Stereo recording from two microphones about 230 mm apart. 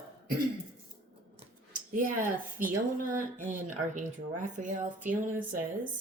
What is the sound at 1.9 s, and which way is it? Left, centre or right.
A woman's voice, right.